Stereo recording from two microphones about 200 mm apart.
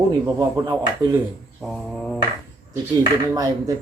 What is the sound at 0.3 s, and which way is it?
Speech, 20° right (ahead or behind).